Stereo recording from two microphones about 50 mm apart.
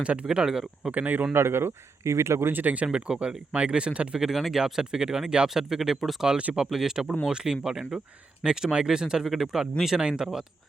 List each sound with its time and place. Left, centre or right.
0.0 s speech: right
0.3 s speech: centre
0.9 s speech: right
1.3 s speech: right
2.0 s speech: right
2.5 s speech: right
2.8 s speech: centre
4.2 s speech: centre